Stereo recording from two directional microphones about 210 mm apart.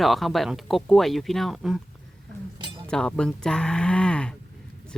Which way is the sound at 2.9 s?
5° left (ahead or behind).